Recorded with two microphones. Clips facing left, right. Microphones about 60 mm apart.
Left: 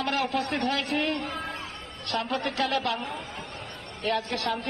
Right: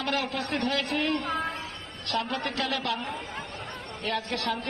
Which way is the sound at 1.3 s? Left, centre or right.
Right.